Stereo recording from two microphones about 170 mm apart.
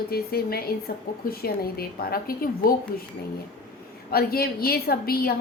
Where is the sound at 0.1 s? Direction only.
65° left (ahead or behind).